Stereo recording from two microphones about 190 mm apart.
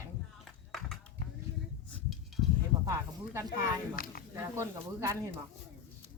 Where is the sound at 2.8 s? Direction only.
15° right (ahead or behind).